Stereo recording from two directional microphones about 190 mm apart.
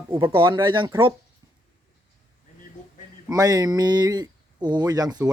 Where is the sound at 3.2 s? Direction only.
20° right (ahead or behind).